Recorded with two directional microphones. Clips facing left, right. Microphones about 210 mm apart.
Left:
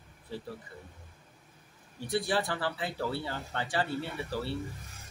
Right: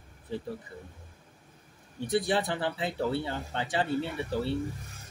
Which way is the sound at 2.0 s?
20° right (ahead or behind).